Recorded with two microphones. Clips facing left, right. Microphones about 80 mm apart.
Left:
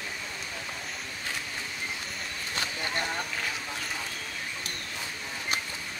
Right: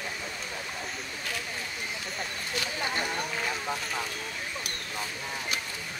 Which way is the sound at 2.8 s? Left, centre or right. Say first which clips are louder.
Right 1 dB; centre.